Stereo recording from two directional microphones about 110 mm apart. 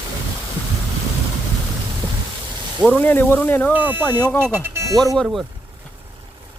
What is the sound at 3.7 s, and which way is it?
Speech, 15° right (ahead or behind).